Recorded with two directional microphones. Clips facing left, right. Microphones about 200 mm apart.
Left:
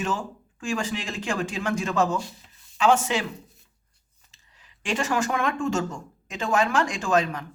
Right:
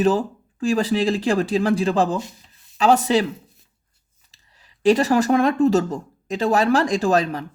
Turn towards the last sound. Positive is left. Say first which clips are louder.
# right 5 dB
turn(degrees=-35)  # may be behind; listen again after turning